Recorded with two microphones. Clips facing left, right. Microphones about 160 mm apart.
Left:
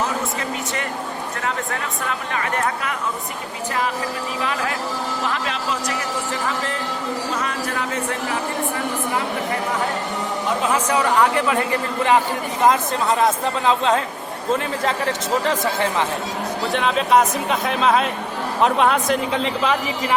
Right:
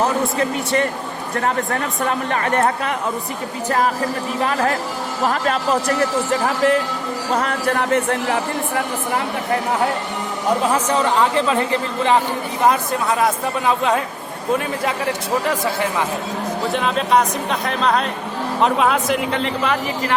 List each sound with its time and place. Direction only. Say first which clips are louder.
2.0 s speech: right 5 dB; 40° right (ahead or behind); by 7.9 s 60° right (ahead or behind)
11.0 s speech: right 1 dB; 20° right (ahead or behind)
12.6 s speech: even; 20° left (ahead or behind)
15.4 s speech: even; 20° left (ahead or behind)
16.7 s a man's voice: left 1 dB; centre (ahead or behind)